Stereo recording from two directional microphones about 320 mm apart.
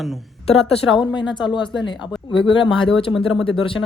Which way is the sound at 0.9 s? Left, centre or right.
Centre.